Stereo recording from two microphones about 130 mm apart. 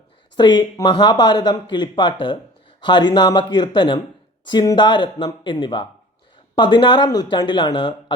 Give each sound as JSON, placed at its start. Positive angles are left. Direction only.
{"t": 0.3, "sound": "speech", "side_deg": 35}